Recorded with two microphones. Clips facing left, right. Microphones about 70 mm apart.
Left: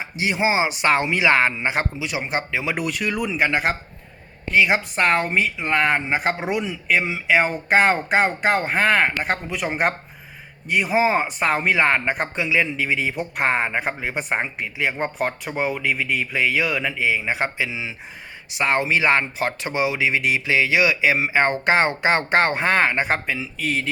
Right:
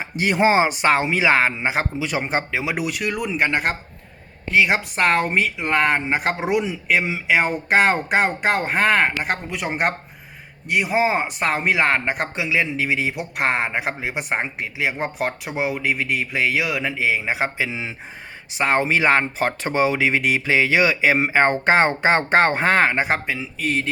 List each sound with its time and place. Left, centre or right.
0.0 s speech: right
0.9 s speech: right
2.0 s speech: right
2.5 s speech: right
2.7 s speech: centre
17.1 s speech: right
17.7 s speech: right; by 23.7 s centre